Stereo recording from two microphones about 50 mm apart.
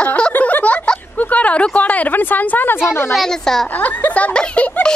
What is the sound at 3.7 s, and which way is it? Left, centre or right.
Laughter, left.